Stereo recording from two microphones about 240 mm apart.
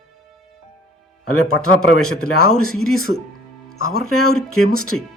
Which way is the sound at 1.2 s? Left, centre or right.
Left.